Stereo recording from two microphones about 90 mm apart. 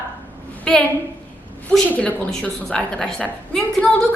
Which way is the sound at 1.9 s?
15° left (ahead or behind).